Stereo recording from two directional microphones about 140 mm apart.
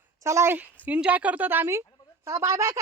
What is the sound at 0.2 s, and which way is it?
Speech, 20° right (ahead or behind).